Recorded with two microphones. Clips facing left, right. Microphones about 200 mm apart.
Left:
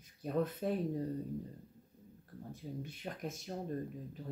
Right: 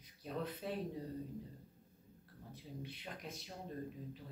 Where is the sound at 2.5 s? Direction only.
45° left (ahead or behind).